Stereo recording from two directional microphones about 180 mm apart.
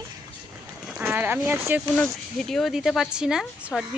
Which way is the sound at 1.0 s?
10° right (ahead or behind).